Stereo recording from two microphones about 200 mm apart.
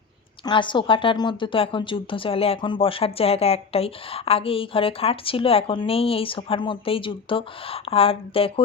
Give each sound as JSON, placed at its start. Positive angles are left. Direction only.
{"t": 0.4, "sound": "a woman's voice", "side_deg": 25}